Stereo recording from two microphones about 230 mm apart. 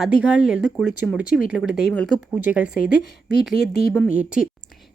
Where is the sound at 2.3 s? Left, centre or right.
Centre.